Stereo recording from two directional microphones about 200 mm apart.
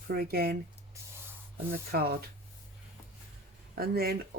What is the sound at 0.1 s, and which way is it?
Speech, 50° right (ahead or behind).